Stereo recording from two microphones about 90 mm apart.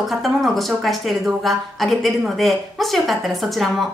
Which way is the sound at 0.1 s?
Centre (ahead or behind).